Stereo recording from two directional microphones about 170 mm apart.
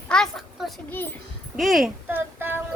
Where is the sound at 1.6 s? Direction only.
Centre (ahead or behind).